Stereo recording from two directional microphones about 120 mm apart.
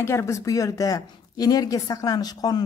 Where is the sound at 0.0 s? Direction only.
20° left (ahead or behind).